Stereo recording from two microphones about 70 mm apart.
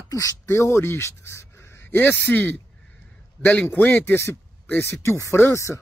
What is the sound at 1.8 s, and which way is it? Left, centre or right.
A man's voice, left.